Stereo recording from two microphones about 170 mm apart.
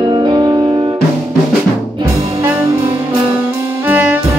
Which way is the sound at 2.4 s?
15° right (ahead or behind).